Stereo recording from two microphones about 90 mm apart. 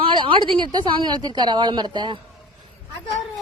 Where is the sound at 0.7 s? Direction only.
55° right (ahead or behind).